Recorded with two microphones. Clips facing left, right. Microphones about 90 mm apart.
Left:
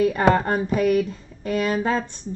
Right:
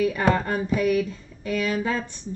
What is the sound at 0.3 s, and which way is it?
Speech, 45° left (ahead or behind).